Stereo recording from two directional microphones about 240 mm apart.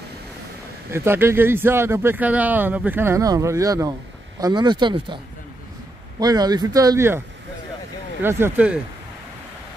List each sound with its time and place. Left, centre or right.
0.9 s speech: centre